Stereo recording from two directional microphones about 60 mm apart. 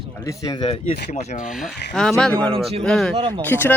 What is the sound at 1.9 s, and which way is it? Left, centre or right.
Speech, centre.